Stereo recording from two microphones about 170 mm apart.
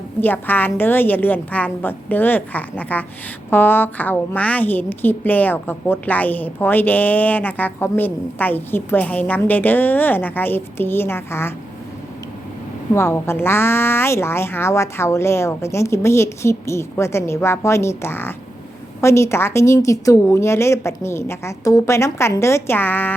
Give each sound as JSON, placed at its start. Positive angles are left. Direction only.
{"t": 0.2, "sound": "a woman's voice", "side_deg": 10}
{"t": 12.9, "sound": "a woman's voice", "side_deg": 15}